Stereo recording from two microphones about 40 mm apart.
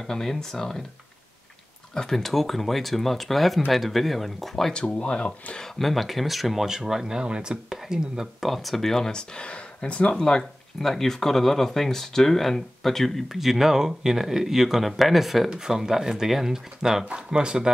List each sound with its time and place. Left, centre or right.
0.0 s speech: centre
2.0 s speech: centre
4.8 s speech: left
5.1 s speech: left
5.8 s speech: centre
8.4 s speech: centre; by 10.1 s left
10.1 s speech: centre
13.4 s speech: centre
17.1 s speech: right